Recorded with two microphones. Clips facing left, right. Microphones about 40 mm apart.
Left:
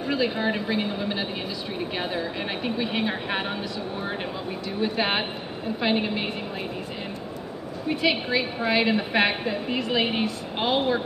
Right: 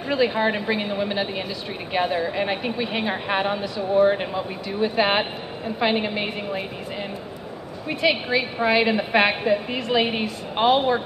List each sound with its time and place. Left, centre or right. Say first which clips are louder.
0.1 s a woman's voice: right 4 dB; centre
4.7 s a woman's voice: right 5 dB; centre
7.9 s a woman's voice: right 2 dB; centre